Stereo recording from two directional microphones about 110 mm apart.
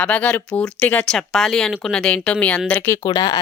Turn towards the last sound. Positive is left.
turn(degrees=35)  # may be behind; listen again after turning